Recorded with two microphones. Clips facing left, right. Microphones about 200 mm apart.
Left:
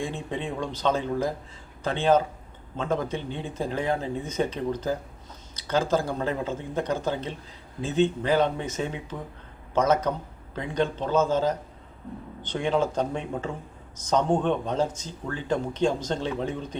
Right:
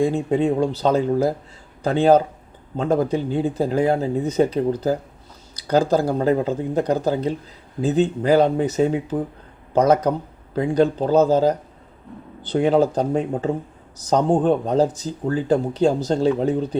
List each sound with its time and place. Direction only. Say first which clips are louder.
0.0 s speech: right 12 dB; 40° right (ahead or behind)